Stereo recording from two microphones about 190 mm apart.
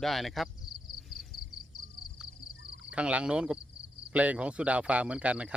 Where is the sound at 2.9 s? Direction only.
5° right (ahead or behind).